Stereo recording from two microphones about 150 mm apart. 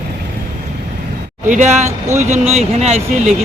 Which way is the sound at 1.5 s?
55° right (ahead or behind).